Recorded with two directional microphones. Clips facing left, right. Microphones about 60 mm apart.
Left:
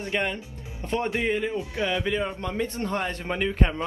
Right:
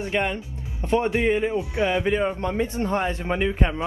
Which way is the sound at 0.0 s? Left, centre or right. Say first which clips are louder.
Right 3 dB; centre.